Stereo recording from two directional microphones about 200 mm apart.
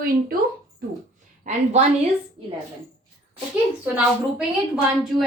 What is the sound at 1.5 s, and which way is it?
Speech, 40° right (ahead or behind).